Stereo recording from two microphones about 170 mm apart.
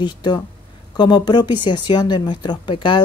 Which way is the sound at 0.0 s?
25° left (ahead or behind).